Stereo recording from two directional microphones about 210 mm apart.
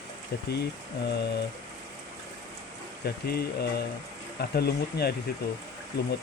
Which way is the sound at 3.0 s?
50° left (ahead or behind).